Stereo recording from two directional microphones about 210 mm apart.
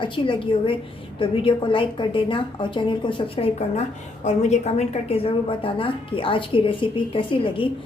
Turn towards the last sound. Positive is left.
turn(degrees=25)  # may be behind; listen again after turning